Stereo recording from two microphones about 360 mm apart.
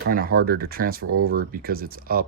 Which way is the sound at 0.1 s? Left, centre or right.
Right.